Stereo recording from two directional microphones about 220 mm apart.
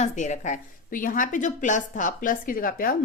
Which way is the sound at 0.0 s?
35° left (ahead or behind).